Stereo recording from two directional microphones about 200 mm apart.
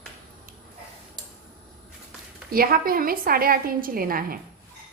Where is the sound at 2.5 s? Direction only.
45° right (ahead or behind).